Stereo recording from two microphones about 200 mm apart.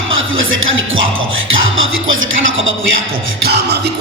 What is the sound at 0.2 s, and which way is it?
Speech, 80° right.